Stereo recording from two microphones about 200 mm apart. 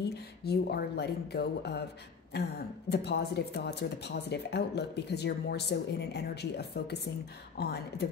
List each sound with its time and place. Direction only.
0.1 s speech: 55° left (ahead or behind)
2.9 s speech: 55° left (ahead or behind)